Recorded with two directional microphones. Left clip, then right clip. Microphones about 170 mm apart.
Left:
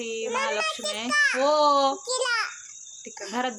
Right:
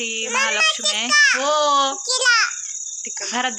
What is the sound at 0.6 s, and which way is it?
Speech, 25° left (ahead or behind).